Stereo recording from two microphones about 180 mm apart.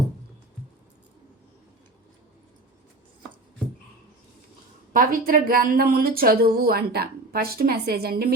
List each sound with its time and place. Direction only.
4.9 s a woman's voice: 50° right (ahead or behind)